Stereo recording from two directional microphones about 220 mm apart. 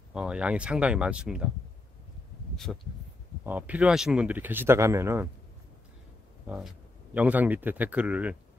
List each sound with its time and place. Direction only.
0.1 s speech: 5° right (ahead or behind)
2.5 s speech: centre (ahead or behind)
6.4 s speech: 5° right (ahead or behind)